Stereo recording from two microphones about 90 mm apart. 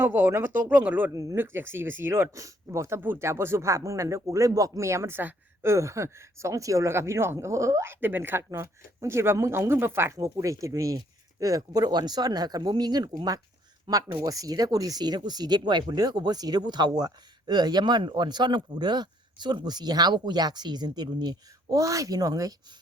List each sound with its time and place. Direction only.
0.0 s speech: 25° right (ahead or behind)
1.1 s speech: 40° right (ahead or behind)
1.4 s speech: 25° right (ahead or behind); by 14.0 s 55° right (ahead or behind)
14.3 s speech: 40° right (ahead or behind)
21.8 s speech: 40° right (ahead or behind)